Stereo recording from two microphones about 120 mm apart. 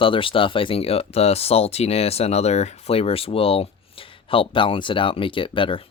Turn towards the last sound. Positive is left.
turn(degrees=45)  # may be behind; listen again after turning